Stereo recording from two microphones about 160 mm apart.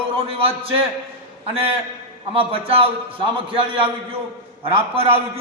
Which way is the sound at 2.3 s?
35° right (ahead or behind).